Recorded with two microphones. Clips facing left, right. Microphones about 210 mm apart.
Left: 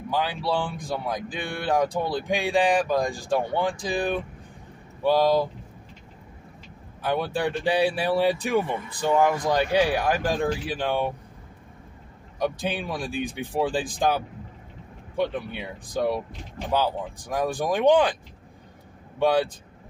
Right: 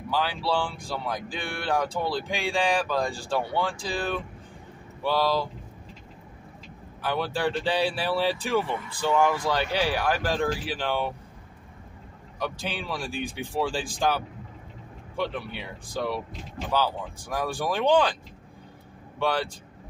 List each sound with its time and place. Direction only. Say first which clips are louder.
0.1 s speech: left 1 dB; 15° left (ahead or behind)
7.0 s speech: left 2 dB; 20° left (ahead or behind)
12.4 s speech: left 5 dB; 20° left (ahead or behind)
19.1 s speech: left 5 dB; 15° left (ahead or behind)